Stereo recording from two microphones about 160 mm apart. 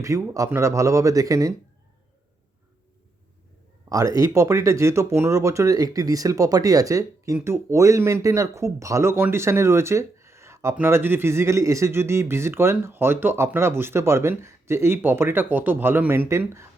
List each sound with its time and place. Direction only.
0.0 s speech: 20° right (ahead or behind)
3.8 s speech: 20° right (ahead or behind)